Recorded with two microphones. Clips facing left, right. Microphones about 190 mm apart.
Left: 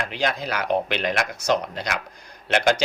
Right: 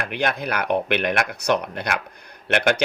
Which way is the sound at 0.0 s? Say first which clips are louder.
Right 1 dB; 60° right (ahead or behind).